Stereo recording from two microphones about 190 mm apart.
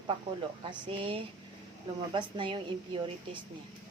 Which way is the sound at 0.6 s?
25° right (ahead or behind).